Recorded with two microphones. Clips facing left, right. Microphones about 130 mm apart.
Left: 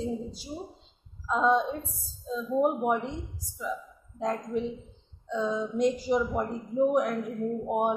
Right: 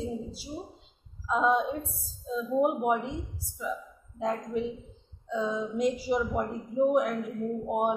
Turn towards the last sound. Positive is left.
turn(degrees=0)  # may be behind; listen again after turning